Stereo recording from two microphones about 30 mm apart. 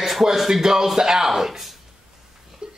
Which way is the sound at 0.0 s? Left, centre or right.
Centre.